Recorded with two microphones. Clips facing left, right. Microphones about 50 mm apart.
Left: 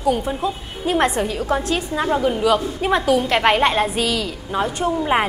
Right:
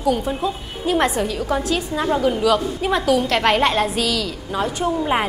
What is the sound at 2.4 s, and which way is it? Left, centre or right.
A woman's voice, centre.